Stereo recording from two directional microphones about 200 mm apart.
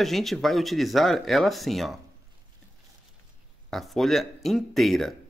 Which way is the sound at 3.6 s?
Centre (ahead or behind).